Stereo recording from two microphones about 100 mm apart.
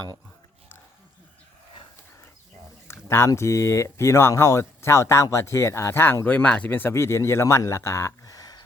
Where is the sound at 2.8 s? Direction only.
25° left (ahead or behind).